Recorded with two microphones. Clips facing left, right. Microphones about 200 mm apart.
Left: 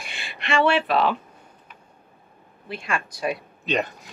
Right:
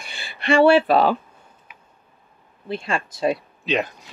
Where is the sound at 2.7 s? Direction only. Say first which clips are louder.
Right 4 dB; 30° right (ahead or behind).